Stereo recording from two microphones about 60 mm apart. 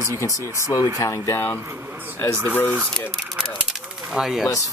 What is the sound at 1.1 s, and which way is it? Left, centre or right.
Speech, left.